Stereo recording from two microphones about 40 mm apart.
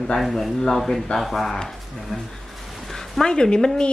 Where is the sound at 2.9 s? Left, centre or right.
Centre.